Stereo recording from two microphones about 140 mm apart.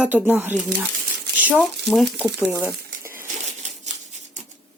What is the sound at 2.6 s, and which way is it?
Crumpling, 15° right (ahead or behind).